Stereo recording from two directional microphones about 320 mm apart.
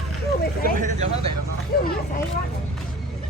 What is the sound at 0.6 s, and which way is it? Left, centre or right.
Speech, right.